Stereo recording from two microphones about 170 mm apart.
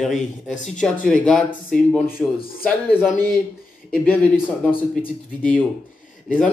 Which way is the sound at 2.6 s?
5° right (ahead or behind).